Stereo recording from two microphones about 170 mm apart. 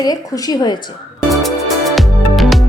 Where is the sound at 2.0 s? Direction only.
Centre (ahead or behind).